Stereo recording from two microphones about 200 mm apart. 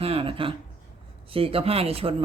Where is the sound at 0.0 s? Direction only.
30° right (ahead or behind).